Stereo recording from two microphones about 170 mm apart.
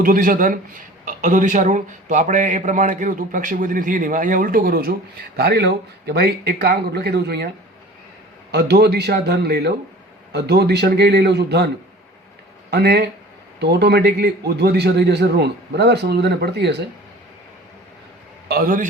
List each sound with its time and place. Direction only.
0.0 s a man's voice: 55° right (ahead or behind)
5.4 s a man's voice: 70° right (ahead or behind)
8.5 s a man's voice: 70° right (ahead or behind)
12.7 s a man's voice: 75° right (ahead or behind)
18.4 s a man's voice: 60° right (ahead or behind)